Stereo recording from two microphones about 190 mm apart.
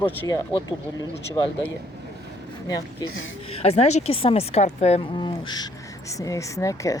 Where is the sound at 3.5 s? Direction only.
35° left (ahead or behind).